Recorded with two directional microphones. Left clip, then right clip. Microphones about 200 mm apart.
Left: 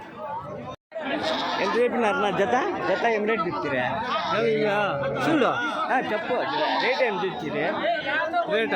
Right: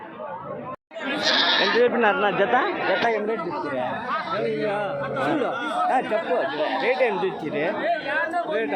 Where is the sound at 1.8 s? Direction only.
20° left (ahead or behind).